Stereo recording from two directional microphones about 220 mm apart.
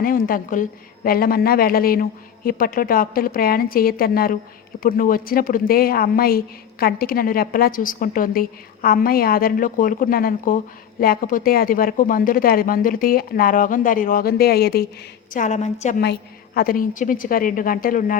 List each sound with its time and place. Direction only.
0.0 s speech: 40° left (ahead or behind)
15.3 s speech: 35° left (ahead or behind)